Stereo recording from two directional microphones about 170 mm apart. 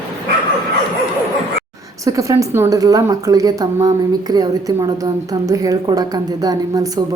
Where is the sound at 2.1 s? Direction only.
20° right (ahead or behind).